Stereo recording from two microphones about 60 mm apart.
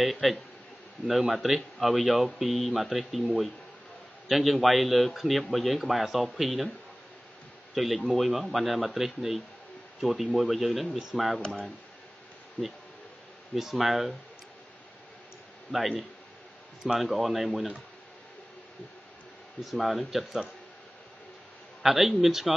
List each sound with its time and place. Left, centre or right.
0.0 s speech: centre
4.3 s speech: centre
7.7 s speech: centre
12.6 s speech: centre
13.6 s speech: centre
16.8 s speech: centre
19.6 s speech: centre
21.8 s speech: centre